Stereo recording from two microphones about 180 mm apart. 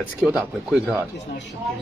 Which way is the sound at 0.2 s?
5° right (ahead or behind).